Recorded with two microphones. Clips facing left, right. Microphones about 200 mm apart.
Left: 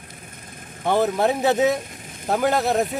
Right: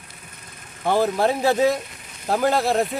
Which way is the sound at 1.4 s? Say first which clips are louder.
Right 1 dB; 20° left (ahead or behind).